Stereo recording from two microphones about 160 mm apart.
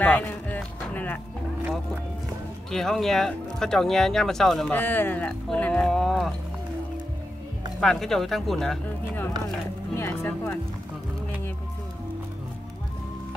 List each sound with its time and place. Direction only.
0.0 s music: 10° left (ahead or behind)
2.7 s speech: centre (ahead or behind)
7.8 s speech: 5° left (ahead or behind)